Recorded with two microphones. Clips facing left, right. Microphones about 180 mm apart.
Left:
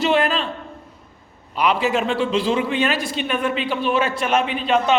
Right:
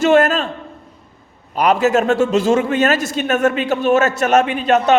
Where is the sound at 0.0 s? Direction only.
45° right (ahead or behind).